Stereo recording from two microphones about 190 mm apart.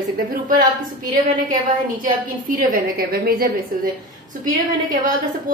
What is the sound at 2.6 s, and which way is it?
A woman's voice, 50° right (ahead or behind).